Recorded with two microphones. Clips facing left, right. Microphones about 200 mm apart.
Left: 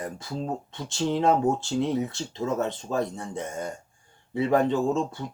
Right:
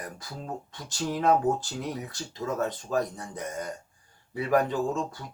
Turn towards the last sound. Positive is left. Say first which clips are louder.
# left 4 dB
turn(degrees=25)  # may be behind; listen again after turning